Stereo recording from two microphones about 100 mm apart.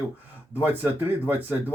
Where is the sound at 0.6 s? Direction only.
20° right (ahead or behind).